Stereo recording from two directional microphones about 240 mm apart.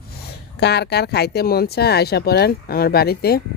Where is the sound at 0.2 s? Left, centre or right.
Left.